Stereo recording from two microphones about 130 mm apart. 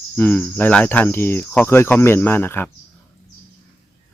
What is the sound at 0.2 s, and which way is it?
Speech, 15° left (ahead or behind).